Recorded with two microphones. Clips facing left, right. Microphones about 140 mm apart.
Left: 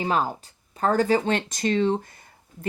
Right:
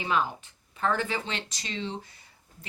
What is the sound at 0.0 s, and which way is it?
Speech, 40° left (ahead or behind).